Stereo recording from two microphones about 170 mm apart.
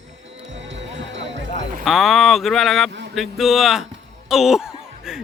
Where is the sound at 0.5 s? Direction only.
90° right.